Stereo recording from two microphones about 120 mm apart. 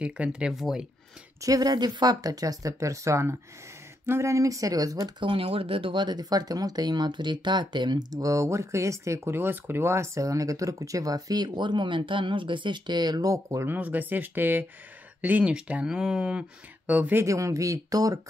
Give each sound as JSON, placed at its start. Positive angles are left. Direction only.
{"t": 0.0, "sound": "speech", "side_deg": -10}
{"t": 1.4, "sound": "speech", "side_deg": -30}
{"t": 5.2, "sound": "speech", "side_deg": -50}
{"t": 13.7, "sound": "speech", "side_deg": -15}